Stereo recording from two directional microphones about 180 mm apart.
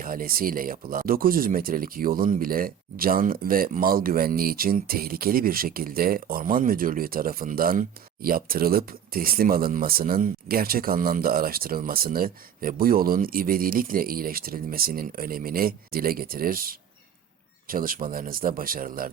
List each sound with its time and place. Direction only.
0.0 s speech: 50° right (ahead or behind)